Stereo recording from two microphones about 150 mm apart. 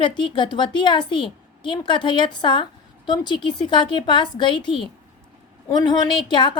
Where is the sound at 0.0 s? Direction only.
30° left (ahead or behind).